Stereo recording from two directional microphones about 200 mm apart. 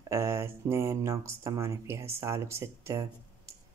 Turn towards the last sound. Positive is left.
turn(degrees=-15)  # may be behind; listen again after turning